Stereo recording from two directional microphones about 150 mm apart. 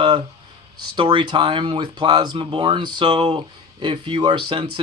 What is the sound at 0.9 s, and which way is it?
Speech, 30° right (ahead or behind).